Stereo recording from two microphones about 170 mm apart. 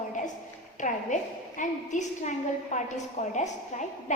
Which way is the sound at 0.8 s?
45° left (ahead or behind).